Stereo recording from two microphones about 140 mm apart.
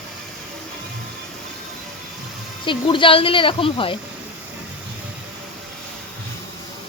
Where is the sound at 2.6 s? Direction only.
35° left (ahead or behind).